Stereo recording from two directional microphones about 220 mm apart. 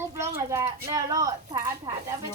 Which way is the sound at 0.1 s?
10° right (ahead or behind).